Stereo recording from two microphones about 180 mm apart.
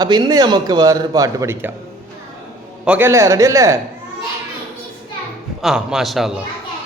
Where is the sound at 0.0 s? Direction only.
20° right (ahead or behind).